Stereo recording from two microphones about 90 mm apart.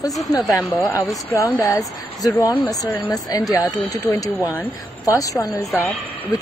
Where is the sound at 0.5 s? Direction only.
30° left (ahead or behind).